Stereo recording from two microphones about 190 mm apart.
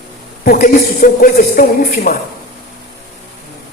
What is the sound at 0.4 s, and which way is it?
A man's voice, 50° left (ahead or behind).